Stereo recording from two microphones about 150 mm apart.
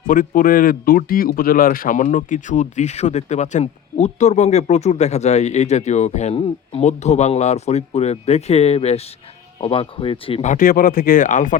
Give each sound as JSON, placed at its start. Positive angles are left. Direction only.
{"t": 0.1, "sound": "speech", "side_deg": 65}
{"t": 10.5, "sound": "speech", "side_deg": 70}